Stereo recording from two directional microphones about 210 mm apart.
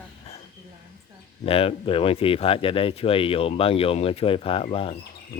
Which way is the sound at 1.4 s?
25° left (ahead or behind).